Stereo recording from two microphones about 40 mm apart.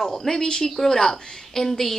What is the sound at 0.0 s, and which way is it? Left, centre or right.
A woman's voice, centre.